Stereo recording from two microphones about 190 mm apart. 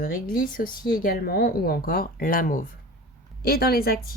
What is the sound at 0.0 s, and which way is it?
A woman's voice, 50° left (ahead or behind).